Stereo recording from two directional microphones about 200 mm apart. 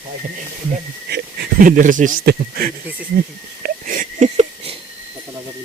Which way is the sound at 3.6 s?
45° right (ahead or behind).